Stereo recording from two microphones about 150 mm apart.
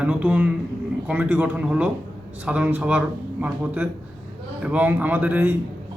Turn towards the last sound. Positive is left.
turn(degrees=-10)  # may be behind; listen again after turning